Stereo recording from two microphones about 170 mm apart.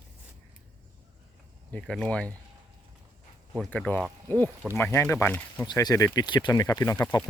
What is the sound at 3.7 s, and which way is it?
Speech, 5° left (ahead or behind).